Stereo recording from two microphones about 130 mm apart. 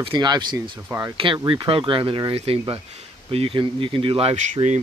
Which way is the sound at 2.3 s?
50° right (ahead or behind).